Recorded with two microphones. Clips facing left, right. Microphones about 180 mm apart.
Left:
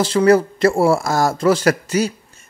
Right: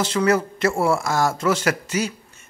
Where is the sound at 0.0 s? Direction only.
35° left (ahead or behind).